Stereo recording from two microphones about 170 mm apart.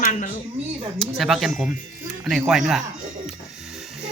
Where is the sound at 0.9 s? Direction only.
Centre (ahead or behind).